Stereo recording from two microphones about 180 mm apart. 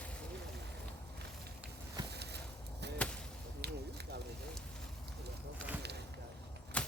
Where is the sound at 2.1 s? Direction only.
65° right (ahead or behind).